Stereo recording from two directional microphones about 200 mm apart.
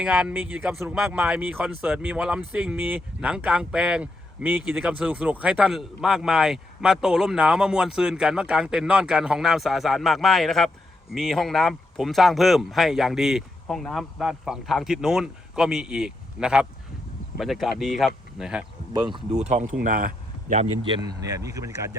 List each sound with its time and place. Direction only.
0.0 s speech: 5° right (ahead or behind)
19.1 s speech: 35° right (ahead or behind)
20.8 s speech: 20° right (ahead or behind)